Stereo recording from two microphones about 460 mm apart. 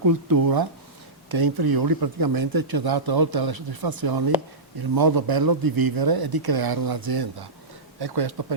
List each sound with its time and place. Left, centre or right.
0.0 s speech: right